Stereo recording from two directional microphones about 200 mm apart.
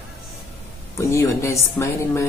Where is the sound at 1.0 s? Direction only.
15° left (ahead or behind).